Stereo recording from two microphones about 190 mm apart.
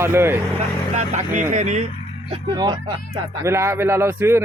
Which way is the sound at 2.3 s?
20° right (ahead or behind).